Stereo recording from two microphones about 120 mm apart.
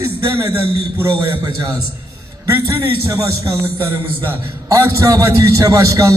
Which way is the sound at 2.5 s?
20° right (ahead or behind).